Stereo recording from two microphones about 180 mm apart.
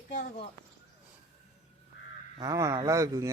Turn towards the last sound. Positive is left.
turn(degrees=-15)  # may be behind; listen again after turning